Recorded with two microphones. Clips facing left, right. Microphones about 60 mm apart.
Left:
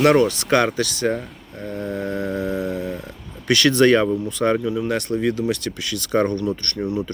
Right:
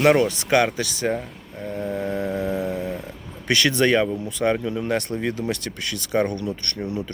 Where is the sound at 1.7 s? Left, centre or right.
Centre.